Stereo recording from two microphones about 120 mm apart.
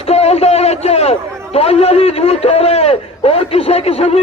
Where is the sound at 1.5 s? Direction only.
60° left (ahead or behind).